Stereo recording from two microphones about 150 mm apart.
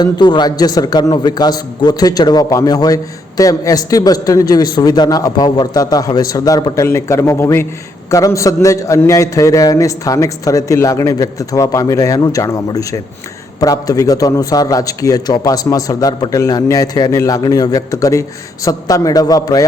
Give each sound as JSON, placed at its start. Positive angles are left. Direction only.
{"t": 0.0, "sound": "a man's voice", "side_deg": 30}